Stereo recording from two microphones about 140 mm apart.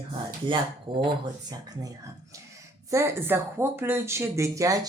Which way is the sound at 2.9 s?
20° right (ahead or behind).